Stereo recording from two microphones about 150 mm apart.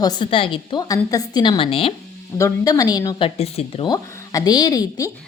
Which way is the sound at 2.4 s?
25° left (ahead or behind).